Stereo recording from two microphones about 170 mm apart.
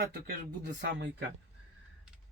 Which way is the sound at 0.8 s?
90° right.